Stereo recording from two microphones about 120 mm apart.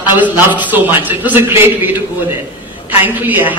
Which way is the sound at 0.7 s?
15° right (ahead or behind).